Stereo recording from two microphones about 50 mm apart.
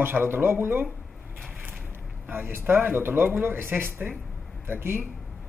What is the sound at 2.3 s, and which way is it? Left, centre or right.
Speech, right.